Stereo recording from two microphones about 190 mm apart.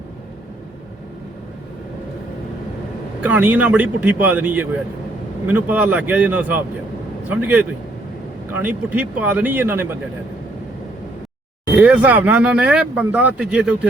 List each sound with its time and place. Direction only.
3.2 s speech: 10° right (ahead or behind)
11.8 s speech: 10° right (ahead or behind)